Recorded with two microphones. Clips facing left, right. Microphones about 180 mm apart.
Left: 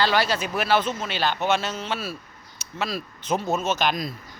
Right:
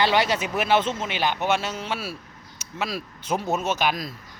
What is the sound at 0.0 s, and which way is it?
A man's voice, 20° right (ahead or behind).